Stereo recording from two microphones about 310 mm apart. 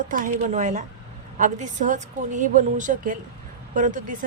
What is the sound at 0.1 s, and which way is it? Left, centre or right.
A woman's voice, right.